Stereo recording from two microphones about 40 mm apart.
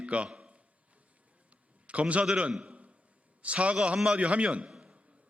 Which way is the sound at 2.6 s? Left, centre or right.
Right.